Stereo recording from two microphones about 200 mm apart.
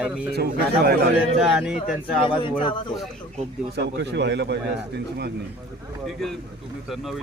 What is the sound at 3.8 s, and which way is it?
Speech, 60° right (ahead or behind).